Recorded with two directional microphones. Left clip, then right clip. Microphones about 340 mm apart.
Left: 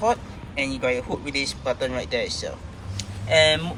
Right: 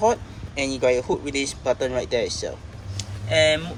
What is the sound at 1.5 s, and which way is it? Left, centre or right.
Speech, centre.